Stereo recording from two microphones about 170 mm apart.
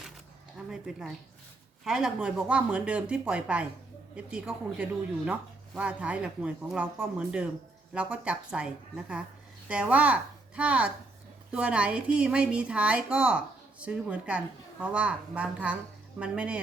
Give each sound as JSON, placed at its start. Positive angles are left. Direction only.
{"t": 0.7, "sound": "a woman's voice", "side_deg": -5}